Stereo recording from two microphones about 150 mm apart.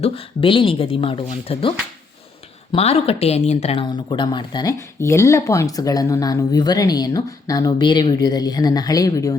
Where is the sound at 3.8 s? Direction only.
30° left (ahead or behind).